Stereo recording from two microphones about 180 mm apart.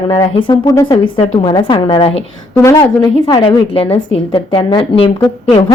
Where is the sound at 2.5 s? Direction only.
20° left (ahead or behind).